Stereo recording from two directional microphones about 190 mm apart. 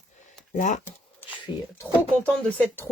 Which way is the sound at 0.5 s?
40° left (ahead or behind).